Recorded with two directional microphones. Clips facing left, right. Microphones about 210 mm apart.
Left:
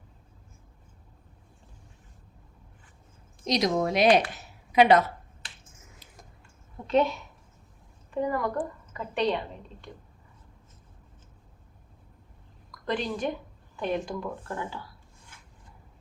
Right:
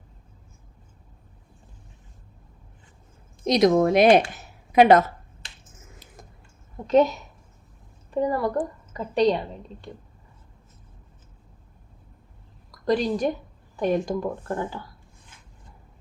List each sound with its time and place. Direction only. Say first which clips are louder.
3.4 s a woman's voice: right 7 dB; 55° right (ahead or behind)
6.8 s a woman's voice: right 5 dB; 40° right (ahead or behind)
12.8 s a woman's voice: right 7 dB; 35° right (ahead or behind)